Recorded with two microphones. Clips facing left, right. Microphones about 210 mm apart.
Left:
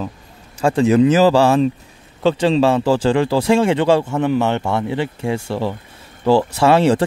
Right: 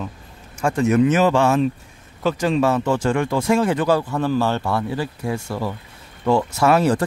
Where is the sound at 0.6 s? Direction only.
30° left (ahead or behind).